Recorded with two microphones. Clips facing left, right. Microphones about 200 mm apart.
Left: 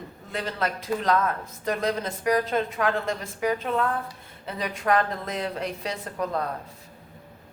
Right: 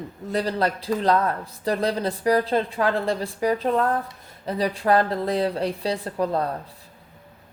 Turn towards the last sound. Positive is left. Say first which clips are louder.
# right 4 dB
turn(degrees=-35)  # may be behind; listen again after turning